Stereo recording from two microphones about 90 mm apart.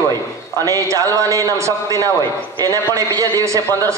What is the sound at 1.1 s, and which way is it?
A man's voice, 40° right (ahead or behind).